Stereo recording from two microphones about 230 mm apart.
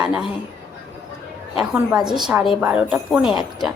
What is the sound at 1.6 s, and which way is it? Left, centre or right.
Speech, centre.